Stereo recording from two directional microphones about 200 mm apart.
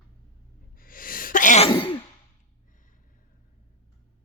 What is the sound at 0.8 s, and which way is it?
Sneeze, 45° left (ahead or behind).